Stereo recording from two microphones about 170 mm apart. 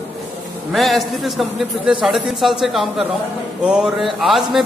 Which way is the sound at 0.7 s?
Centre (ahead or behind).